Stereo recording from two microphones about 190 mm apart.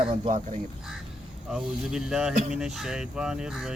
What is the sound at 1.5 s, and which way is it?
Speech, 5° right (ahead or behind).